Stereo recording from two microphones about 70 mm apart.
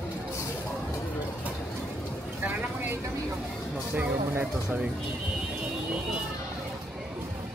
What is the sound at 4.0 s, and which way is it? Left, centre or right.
Speech, right.